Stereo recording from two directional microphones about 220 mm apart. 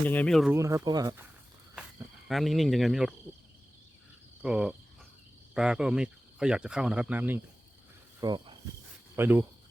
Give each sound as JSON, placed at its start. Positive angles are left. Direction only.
{"t": 0.1, "sound": "speech", "side_deg": 5}
{"t": 0.5, "sound": "speech", "side_deg": -15}
{"t": 1.7, "sound": "speech", "side_deg": 0}
{"t": 4.4, "sound": "speech", "side_deg": -5}
{"t": 8.2, "sound": "cricket", "side_deg": -20}
{"t": 9.1, "sound": "speech", "side_deg": -10}